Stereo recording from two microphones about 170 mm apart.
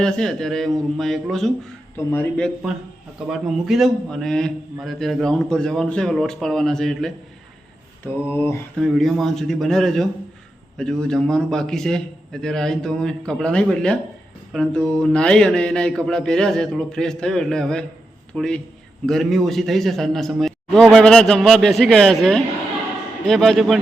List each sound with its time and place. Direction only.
0.0 s a man's voice: 5° left (ahead or behind)
8.8 s a man's voice: centre (ahead or behind)